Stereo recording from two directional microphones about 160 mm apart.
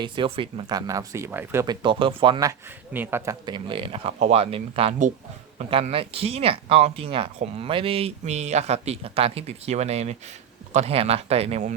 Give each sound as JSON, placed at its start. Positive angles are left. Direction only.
{"t": 0.0, "sound": "speech", "side_deg": -35}
{"t": 1.6, "sound": "speech", "side_deg": -30}
{"t": 2.5, "sound": "speech", "side_deg": -15}
{"t": 3.4, "sound": "speech", "side_deg": -30}